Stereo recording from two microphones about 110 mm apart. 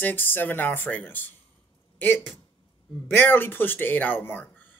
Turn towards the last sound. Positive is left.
turn(degrees=15)  # may be behind; listen again after turning